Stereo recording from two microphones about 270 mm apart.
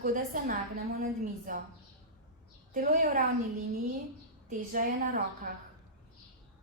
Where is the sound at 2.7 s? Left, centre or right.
Right.